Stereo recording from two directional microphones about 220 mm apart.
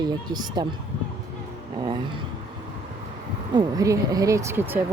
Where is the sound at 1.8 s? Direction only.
20° right (ahead or behind).